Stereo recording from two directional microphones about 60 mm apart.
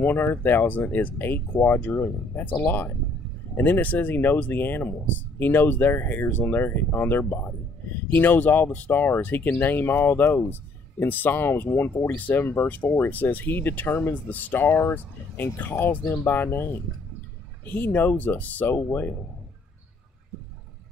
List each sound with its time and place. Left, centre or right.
0.0 s speech: left
17.6 s speech: left